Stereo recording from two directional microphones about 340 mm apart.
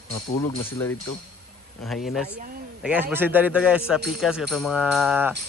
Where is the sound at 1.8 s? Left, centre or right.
Centre.